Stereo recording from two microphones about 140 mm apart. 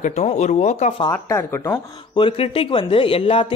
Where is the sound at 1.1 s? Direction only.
15° left (ahead or behind).